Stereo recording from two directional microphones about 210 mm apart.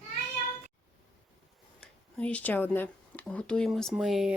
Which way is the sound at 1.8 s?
5° left (ahead or behind).